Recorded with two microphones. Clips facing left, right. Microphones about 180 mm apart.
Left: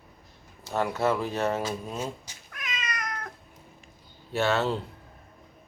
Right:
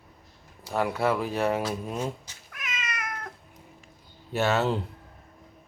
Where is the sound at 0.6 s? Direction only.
10° right (ahead or behind).